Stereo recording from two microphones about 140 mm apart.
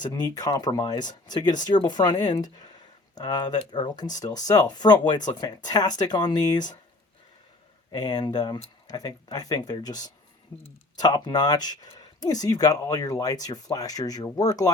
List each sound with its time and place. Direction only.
0.0 s speech: 30° left (ahead or behind)
7.9 s speech: 30° left (ahead or behind)